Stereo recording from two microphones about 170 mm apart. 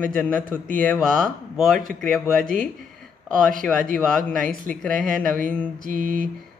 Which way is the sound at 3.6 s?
5° left (ahead or behind).